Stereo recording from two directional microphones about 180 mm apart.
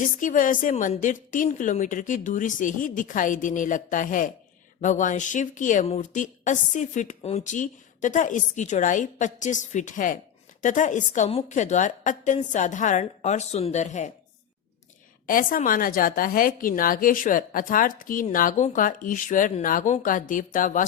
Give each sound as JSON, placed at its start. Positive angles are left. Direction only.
{"t": 0.0, "sound": "a woman's voice", "side_deg": 45}
{"t": 15.3, "sound": "a woman's voice", "side_deg": 50}